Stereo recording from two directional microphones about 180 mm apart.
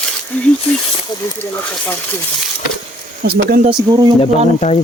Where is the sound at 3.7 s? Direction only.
25° right (ahead or behind).